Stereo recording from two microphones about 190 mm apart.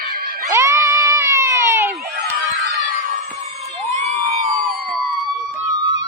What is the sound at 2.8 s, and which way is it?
Crowd, 45° right (ahead or behind).